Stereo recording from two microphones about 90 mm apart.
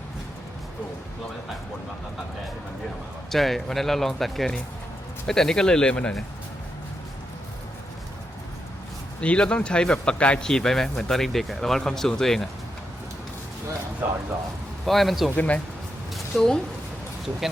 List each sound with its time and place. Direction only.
3.2 s speech: centre (ahead or behind)
9.2 s speech: 10° left (ahead or behind)
14.8 s speech: centre (ahead or behind)
15.4 s speech: 15° left (ahead or behind)
16.1 s a sound: 5° left (ahead or behind)